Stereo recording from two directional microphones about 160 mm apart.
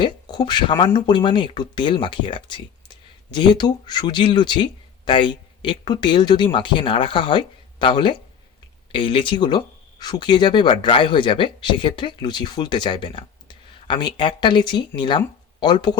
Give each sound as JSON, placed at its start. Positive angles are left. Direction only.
{"t": 0.0, "sound": "speech", "side_deg": 30}